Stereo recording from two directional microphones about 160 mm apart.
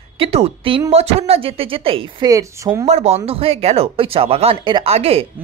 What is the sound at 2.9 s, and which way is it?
Speech, 40° right (ahead or behind).